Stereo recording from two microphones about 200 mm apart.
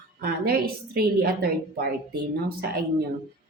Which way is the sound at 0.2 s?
50° right (ahead or behind).